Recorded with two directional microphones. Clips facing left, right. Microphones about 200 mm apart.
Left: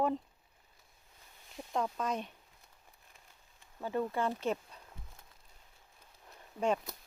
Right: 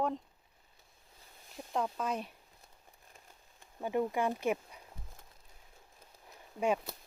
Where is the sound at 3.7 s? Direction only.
15° right (ahead or behind).